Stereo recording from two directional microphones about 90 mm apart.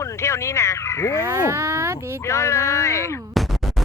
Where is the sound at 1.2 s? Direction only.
35° right (ahead or behind).